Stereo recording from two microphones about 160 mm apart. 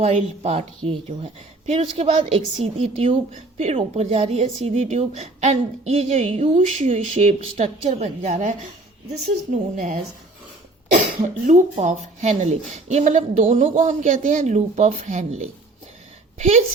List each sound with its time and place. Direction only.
0.0 s a woman's voice: 40° right (ahead or behind)
11.2 s a woman's voice: 50° right (ahead or behind)
16.4 s a woman's voice: 45° right (ahead or behind)